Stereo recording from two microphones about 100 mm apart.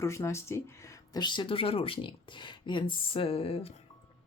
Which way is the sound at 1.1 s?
50° left (ahead or behind).